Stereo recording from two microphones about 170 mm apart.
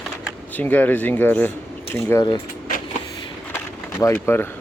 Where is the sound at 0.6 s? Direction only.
10° left (ahead or behind).